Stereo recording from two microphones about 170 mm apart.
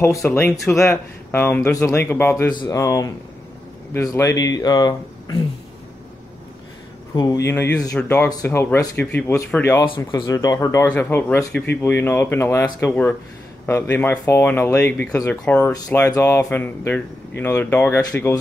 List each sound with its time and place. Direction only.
0.2 s speech: 10° left (ahead or behind)
2.5 s speech: 25° left (ahead or behind)
7.2 s speech: 20° left (ahead or behind)
9.8 s speech: 25° left (ahead or behind)